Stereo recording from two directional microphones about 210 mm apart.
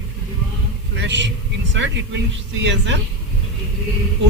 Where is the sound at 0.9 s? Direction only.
55° right (ahead or behind).